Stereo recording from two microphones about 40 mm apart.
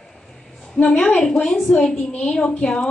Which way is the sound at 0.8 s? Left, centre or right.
Left.